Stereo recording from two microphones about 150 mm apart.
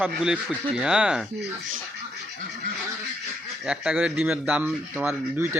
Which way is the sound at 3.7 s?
5° right (ahead or behind).